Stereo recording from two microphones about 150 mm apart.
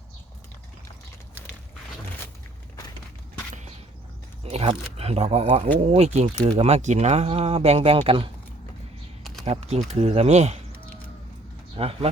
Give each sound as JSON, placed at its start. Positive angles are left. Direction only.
{"t": 4.4, "sound": "speech", "side_deg": -45}
{"t": 9.4, "sound": "speech", "side_deg": -45}
{"t": 11.8, "sound": "speech", "side_deg": -40}